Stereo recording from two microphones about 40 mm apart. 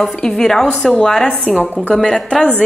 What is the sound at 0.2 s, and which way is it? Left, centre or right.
Speech, centre.